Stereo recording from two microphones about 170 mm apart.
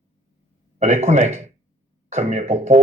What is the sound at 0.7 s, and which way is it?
Speech, 40° right (ahead or behind).